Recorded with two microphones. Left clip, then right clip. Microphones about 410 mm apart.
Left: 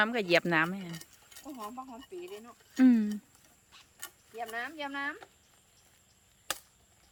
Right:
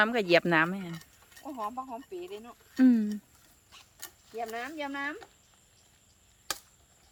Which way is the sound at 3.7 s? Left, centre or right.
Right.